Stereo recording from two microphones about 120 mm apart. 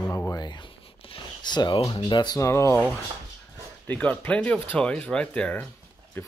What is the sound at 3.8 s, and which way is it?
Speech, 15° left (ahead or behind).